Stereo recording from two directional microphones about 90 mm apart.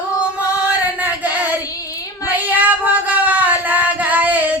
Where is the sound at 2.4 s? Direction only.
20° right (ahead or behind).